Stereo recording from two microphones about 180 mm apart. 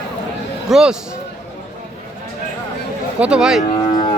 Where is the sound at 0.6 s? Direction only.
5° right (ahead or behind).